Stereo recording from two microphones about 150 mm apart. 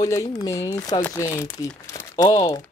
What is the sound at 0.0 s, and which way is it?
Speech, 25° left (ahead or behind).